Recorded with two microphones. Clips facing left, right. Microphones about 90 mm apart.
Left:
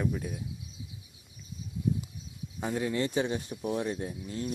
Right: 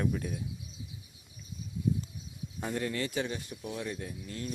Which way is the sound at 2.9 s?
25° left (ahead or behind).